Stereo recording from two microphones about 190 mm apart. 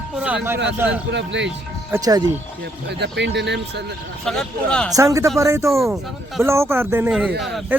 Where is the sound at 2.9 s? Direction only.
60° right (ahead or behind).